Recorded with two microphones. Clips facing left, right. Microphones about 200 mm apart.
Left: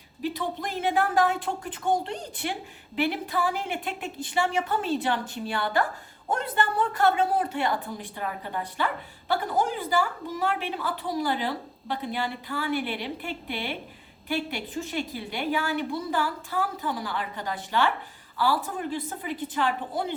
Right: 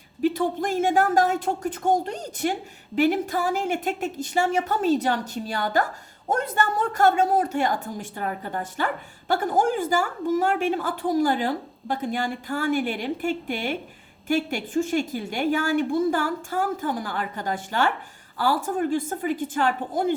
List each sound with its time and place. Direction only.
0.2 s a woman's voice: 45° right (ahead or behind)